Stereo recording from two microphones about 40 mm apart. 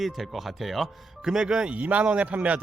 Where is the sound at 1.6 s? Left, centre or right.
Right.